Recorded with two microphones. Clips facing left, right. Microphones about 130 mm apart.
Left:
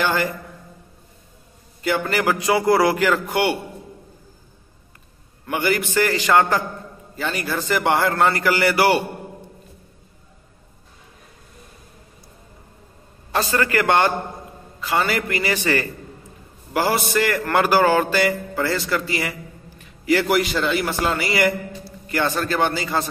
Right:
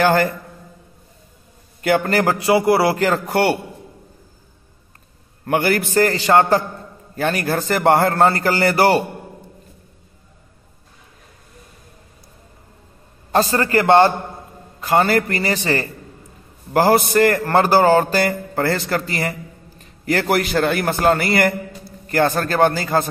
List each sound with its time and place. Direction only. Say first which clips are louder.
0.0 s a man's voice: right 6 dB; 45° right (ahead or behind)
1.8 s a man's voice: right 5 dB; 50° right (ahead or behind)
5.4 s a man's voice: right 4 dB; 50° right (ahead or behind); by 6.6 s 30° right (ahead or behind)
7.2 s a man's voice: right 5 dB; 50° right (ahead or behind)
13.3 s a man's voice: right 4 dB; 40° right (ahead or behind)
14.8 s a man's voice: right 5 dB; 50° right (ahead or behind)
16.7 s a man's voice: right 6 dB; 50° right (ahead or behind)